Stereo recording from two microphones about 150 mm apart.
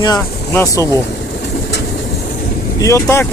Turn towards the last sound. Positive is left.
turn(degrees=20)  # may be behind; listen again after turning